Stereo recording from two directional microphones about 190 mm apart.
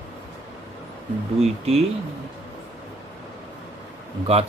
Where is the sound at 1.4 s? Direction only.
35° right (ahead or behind).